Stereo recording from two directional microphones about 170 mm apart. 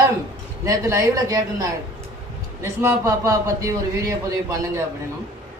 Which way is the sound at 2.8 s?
20° right (ahead or behind).